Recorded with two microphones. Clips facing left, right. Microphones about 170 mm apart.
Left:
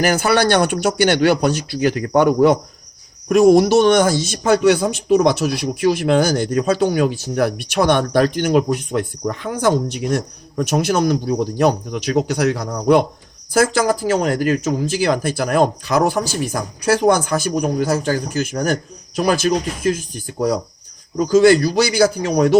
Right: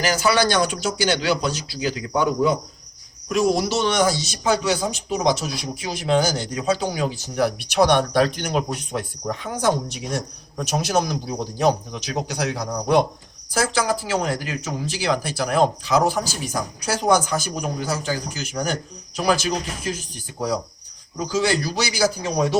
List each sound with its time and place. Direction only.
0.0 s speech: 55° left (ahead or behind)
3.2 s speech: 55° left (ahead or behind)